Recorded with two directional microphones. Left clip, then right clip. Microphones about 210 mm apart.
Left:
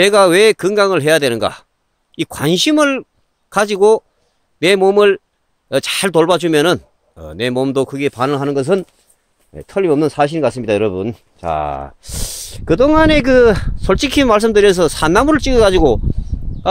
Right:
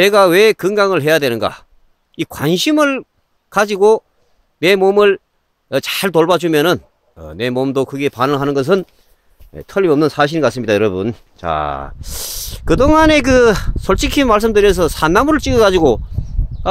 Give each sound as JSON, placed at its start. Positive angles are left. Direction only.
{"t": 0.0, "sound": "speech", "side_deg": 5}